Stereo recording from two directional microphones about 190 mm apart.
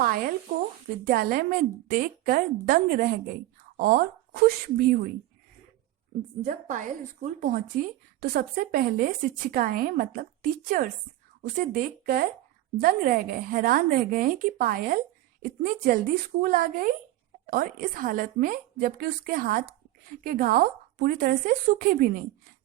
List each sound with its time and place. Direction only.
1.0 s a woman's voice: 50° right (ahead or behind)
6.4 s a woman's voice: 40° right (ahead or behind)